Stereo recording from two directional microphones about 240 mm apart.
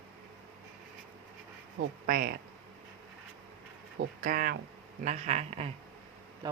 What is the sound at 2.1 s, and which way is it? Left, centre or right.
Speech, right.